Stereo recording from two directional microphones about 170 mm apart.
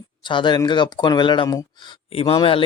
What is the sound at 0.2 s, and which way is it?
A man's voice, 30° left (ahead or behind).